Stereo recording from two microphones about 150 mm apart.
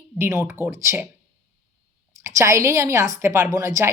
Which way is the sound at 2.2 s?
20° right (ahead or behind).